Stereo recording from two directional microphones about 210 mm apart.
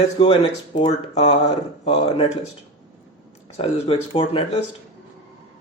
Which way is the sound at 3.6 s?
25° left (ahead or behind).